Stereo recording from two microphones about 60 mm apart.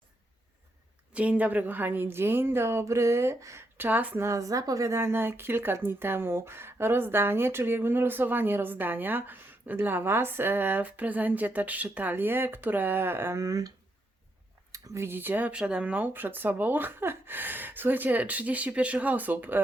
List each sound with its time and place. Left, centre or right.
1.1 s speech: right
3.8 s speech: right
4.2 s speech: right
4.9 s speech: right
13.3 s speech: right
15.0 s speech: right
15.5 s speech: centre